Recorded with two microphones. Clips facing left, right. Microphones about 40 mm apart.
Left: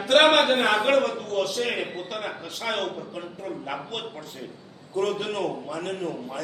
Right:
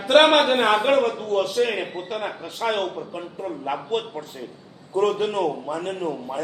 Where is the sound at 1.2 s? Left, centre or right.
Right.